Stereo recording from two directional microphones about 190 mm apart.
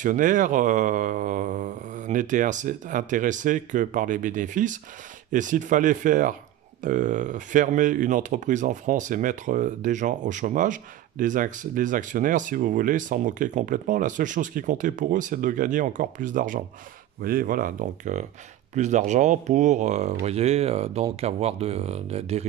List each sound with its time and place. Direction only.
0.0 s speech: 45° right (ahead or behind)